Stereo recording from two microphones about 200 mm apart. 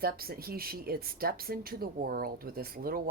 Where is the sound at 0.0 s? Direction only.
50° right (ahead or behind).